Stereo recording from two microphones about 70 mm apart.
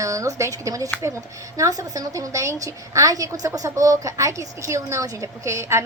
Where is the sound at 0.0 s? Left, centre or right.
Right.